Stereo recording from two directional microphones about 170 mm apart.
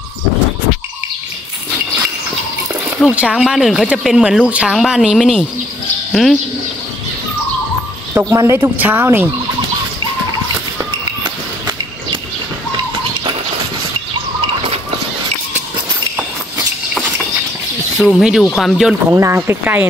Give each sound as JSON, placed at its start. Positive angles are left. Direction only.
{"t": 3.0, "sound": "speech", "side_deg": -5}
{"t": 8.1, "sound": "speech", "side_deg": -15}
{"t": 10.8, "sound": "a sound", "side_deg": -25}
{"t": 17.9, "sound": "speech", "side_deg": -5}
{"t": 19.0, "sound": "speech", "side_deg": -15}